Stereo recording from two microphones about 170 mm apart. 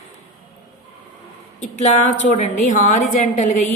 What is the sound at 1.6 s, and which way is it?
A woman's voice, 45° left (ahead or behind).